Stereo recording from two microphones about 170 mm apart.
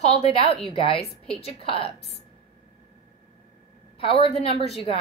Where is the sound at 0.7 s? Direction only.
35° left (ahead or behind).